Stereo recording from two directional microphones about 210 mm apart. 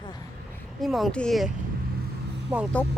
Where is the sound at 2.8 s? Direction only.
10° left (ahead or behind).